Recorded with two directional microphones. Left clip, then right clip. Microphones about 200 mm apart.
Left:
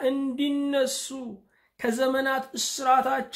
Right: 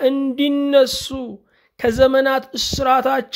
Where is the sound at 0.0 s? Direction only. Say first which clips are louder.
Right 9 dB; 40° right (ahead or behind).